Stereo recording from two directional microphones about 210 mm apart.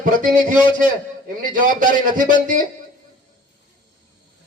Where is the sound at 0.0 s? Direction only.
40° right (ahead or behind).